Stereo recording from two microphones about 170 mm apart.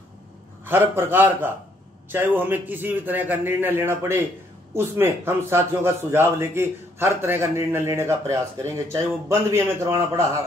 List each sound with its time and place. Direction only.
0.7 s a man's voice: 10° right (ahead or behind)